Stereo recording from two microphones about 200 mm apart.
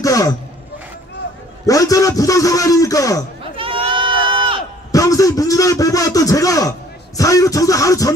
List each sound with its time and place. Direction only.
0.0 s a sound: 15° left (ahead or behind)
1.7 s a man's voice: 15° left (ahead or behind)
3.5 s goat: 25° right (ahead or behind)
4.9 s a man's voice: 15° left (ahead or behind)
7.2 s music: 15° left (ahead or behind)